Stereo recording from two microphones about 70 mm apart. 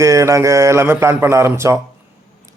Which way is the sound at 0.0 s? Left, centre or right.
Right.